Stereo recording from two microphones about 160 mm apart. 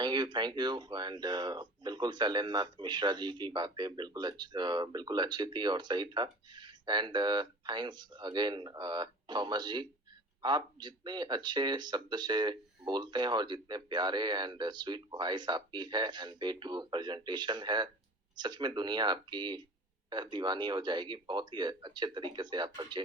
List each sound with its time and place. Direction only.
0.0 s speech: 30° right (ahead or behind)